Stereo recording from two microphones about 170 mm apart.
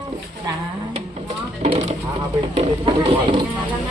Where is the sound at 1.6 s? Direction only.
40° right (ahead or behind).